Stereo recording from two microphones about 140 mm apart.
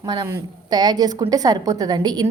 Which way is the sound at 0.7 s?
30° right (ahead or behind).